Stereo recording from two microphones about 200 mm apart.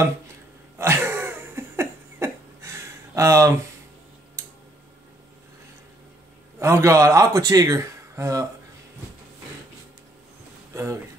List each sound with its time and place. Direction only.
0.7 s cough: 10° right (ahead or behind)
6.6 s speech: 15° right (ahead or behind)
10.7 s a sound: 15° right (ahead or behind)